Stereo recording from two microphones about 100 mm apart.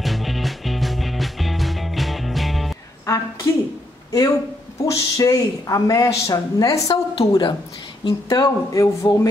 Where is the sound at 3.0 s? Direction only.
30° left (ahead or behind).